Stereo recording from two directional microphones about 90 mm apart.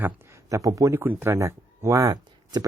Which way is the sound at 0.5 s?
40° right (ahead or behind).